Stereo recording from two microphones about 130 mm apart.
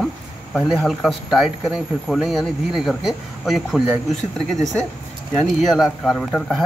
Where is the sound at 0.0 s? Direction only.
Centre (ahead or behind).